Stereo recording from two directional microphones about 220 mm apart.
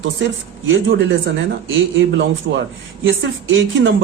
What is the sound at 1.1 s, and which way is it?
A man's voice, 60° right (ahead or behind).